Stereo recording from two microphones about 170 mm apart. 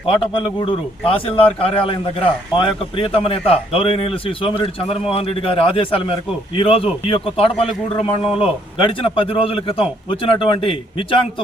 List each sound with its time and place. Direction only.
0.2 s a man's voice: 30° left (ahead or behind)